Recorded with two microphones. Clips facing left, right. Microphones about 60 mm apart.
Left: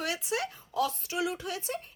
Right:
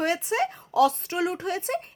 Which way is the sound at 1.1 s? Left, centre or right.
Right.